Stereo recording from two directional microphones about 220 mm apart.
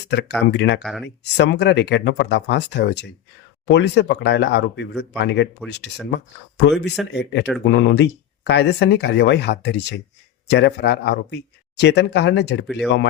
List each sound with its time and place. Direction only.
0.1 s speech: 50° left (ahead or behind)
0.8 s speech: centre (ahead or behind)
1.0 s speech: 50° left (ahead or behind)